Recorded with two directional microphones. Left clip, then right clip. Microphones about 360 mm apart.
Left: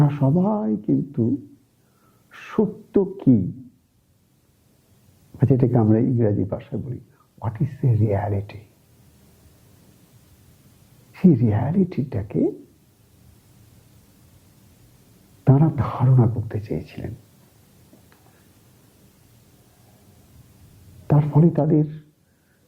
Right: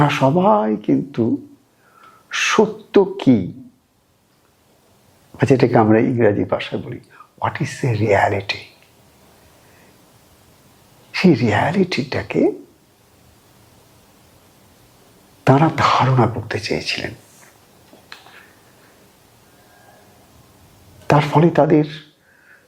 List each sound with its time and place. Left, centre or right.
0.0 s speech: centre
5.4 s speech: centre
11.1 s speech: centre
15.4 s speech: centre
21.1 s speech: centre